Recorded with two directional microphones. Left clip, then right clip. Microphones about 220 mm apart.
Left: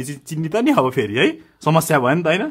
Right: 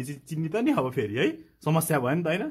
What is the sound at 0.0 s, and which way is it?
A man's voice, 15° left (ahead or behind).